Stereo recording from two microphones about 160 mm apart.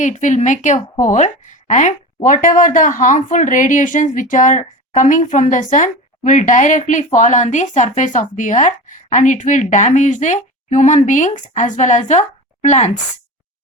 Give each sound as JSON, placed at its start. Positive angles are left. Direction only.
{"t": 0.0, "sound": "speech", "side_deg": 50}